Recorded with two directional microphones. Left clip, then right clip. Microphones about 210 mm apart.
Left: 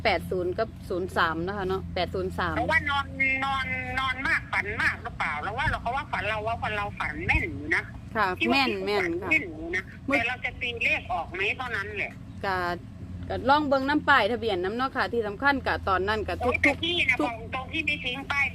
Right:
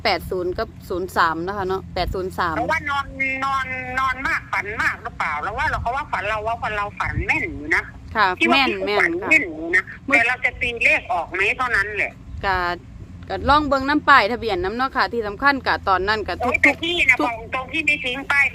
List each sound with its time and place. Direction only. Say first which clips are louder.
0.0 s speech: right 4 dB; 30° right (ahead or behind)
2.6 s a man's voice: right 3 dB; 10° right (ahead or behind)
9.3 s speech: right 9 dB; 30° right (ahead or behind)
13.2 s speech: right 5 dB; 30° right (ahead or behind)